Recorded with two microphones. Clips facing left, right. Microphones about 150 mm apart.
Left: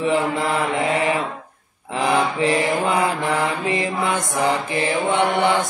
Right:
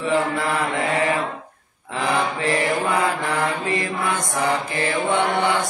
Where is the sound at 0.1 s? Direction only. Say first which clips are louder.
Left 1 dB; 15° left (ahead or behind).